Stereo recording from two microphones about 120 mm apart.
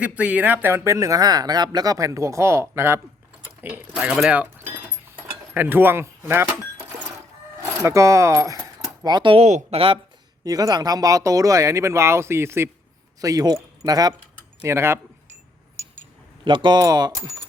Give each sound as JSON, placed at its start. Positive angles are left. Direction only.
{"t": 0.0, "sound": "speech", "side_deg": -10}
{"t": 3.9, "sound": "speech", "side_deg": -5}
{"t": 5.5, "sound": "speech", "side_deg": -15}
{"t": 7.8, "sound": "speech", "side_deg": -25}
{"t": 9.4, "sound": "speech", "side_deg": -70}
{"t": 9.7, "sound": "speech", "side_deg": -50}
{"t": 10.4, "sound": "speech", "side_deg": -30}
{"t": 13.2, "sound": "speech", "side_deg": -30}
{"t": 14.6, "sound": "speech", "side_deg": -20}
{"t": 16.4, "sound": "speech", "side_deg": -40}